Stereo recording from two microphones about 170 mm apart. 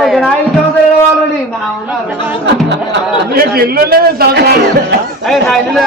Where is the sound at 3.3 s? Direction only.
60° right (ahead or behind).